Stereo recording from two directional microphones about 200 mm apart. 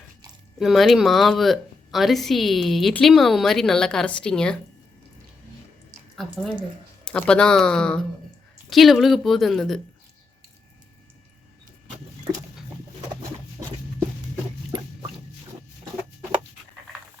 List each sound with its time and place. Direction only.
0.6 s a woman's voice: centre (ahead or behind)
6.1 s a woman's voice: centre (ahead or behind)
13.6 s a sound: 15° right (ahead or behind)